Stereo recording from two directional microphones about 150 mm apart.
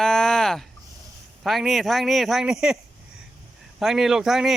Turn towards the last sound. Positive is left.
turn(degrees=0)  # may be behind; listen again after turning